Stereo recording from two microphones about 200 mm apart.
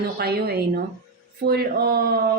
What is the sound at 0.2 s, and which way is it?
Speech, 50° right (ahead or behind).